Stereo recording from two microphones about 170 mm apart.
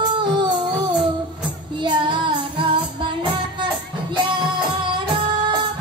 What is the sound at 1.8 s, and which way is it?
Child singing, 30° right (ahead or behind).